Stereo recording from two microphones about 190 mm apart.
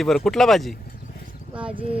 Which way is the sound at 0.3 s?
Centre (ahead or behind).